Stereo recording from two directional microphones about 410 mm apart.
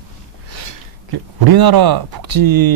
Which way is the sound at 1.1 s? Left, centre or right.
Right.